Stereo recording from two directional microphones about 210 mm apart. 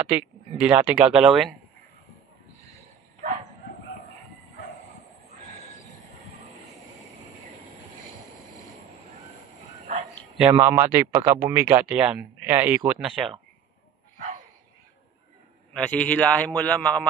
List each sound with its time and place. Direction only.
0.0 s speech: 10° right (ahead or behind)
10.5 s speech: 15° right (ahead or behind)
14.1 s dog: 35° right (ahead or behind)
15.7 s speech: 5° left (ahead or behind)